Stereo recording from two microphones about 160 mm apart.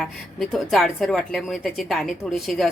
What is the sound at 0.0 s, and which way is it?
A woman's voice, centre (ahead or behind).